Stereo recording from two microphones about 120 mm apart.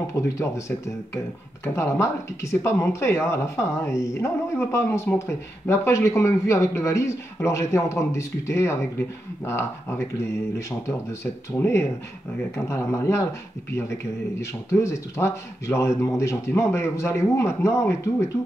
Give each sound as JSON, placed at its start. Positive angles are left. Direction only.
{"t": 0.0, "sound": "speech", "side_deg": 25}
{"t": 11.5, "sound": "speech", "side_deg": 20}
{"t": 14.4, "sound": "speech", "side_deg": 25}